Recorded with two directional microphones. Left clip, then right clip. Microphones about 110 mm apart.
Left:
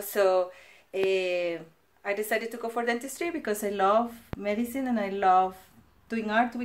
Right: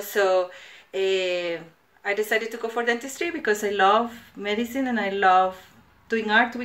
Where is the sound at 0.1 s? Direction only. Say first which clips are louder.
Right 3 dB; 35° left (ahead or behind).